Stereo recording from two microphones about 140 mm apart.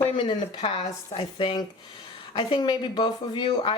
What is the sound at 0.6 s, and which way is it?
Speech, 45° left (ahead or behind).